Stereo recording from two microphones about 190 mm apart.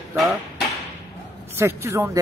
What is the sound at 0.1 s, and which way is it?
Speech, centre (ahead or behind).